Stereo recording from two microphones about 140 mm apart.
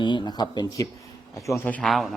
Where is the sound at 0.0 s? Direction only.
30° left (ahead or behind).